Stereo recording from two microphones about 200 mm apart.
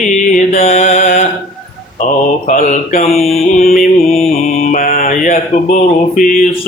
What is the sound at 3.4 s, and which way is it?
Music, 45° left (ahead or behind).